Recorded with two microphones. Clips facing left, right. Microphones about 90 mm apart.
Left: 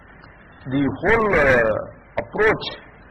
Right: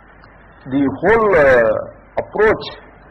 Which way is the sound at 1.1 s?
30° right (ahead or behind).